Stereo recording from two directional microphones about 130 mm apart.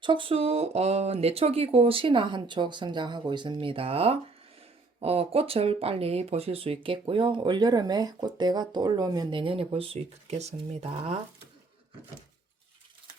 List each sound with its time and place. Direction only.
0.0 s speech: 40° right (ahead or behind)